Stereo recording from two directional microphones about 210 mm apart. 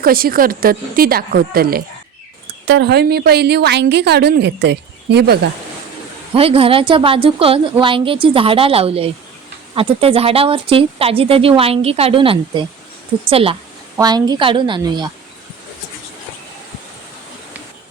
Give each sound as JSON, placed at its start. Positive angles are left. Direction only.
{"t": 0.0, "sound": "a woman's voice", "side_deg": -45}
{"t": 6.3, "sound": "a woman's voice", "side_deg": -25}